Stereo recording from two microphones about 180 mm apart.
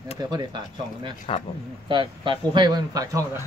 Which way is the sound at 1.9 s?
25° right (ahead or behind).